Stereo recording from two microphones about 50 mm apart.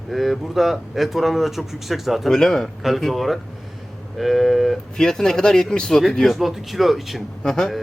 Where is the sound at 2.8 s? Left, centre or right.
Centre.